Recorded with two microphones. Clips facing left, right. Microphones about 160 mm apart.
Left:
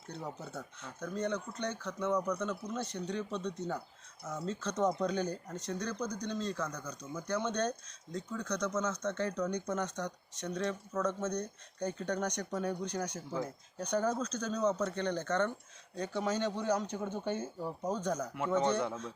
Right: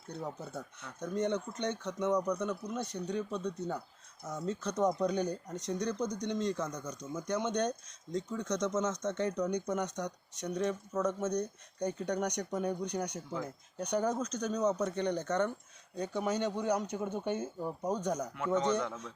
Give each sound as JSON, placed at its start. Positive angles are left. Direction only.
{"t": 0.9, "sound": "speech", "side_deg": -20}
{"t": 18.3, "sound": "speech", "side_deg": 10}